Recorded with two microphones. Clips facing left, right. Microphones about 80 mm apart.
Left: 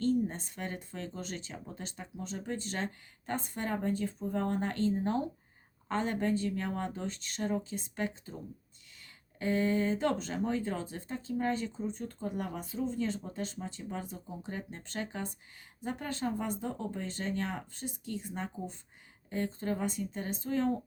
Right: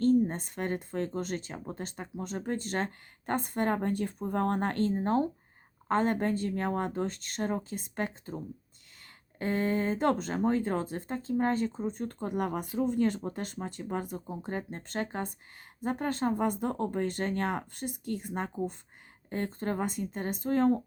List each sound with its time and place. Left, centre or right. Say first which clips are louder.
0.0 s speech: right 5 dB; right
9.4 s speech: even; right